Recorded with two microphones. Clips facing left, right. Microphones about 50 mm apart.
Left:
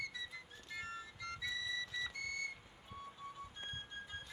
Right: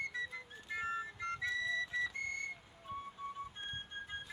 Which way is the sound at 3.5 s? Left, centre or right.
Right.